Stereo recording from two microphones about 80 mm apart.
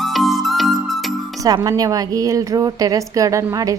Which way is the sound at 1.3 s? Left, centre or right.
Right.